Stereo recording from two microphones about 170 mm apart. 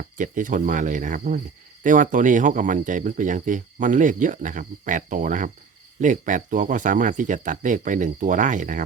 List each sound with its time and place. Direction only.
0.2 s speech: 50° right (ahead or behind)